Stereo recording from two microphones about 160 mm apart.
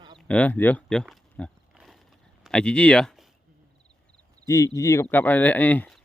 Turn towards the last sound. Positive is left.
turn(degrees=10)  # may be behind; listen again after turning